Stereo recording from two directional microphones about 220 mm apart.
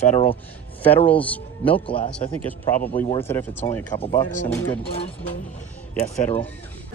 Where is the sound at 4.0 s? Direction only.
20° left (ahead or behind).